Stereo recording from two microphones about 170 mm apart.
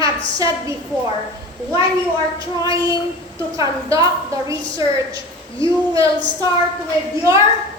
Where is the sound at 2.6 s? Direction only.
20° right (ahead or behind).